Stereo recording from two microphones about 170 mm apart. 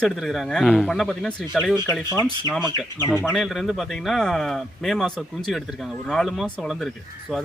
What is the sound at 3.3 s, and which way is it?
Speech, centre (ahead or behind).